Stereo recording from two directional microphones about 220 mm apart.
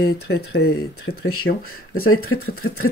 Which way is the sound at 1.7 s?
75° left (ahead or behind).